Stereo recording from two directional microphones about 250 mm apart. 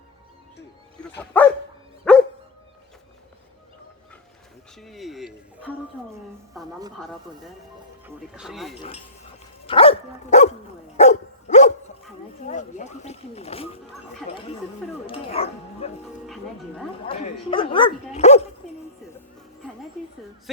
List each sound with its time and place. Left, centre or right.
1.2 s speech: centre
2.0 s dog: centre
4.8 s a woman's voice: centre
8.0 s a woman's voice: centre
9.6 s dog: left
12.5 s speech: left
15.0 s speech: left
16.2 s a woman's voice: centre
17.1 s speech: left
18.6 s a sound: centre